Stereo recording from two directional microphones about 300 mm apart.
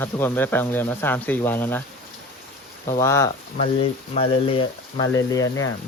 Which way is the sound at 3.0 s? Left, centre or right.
Centre.